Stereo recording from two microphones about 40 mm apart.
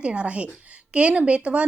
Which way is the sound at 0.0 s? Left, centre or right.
Right.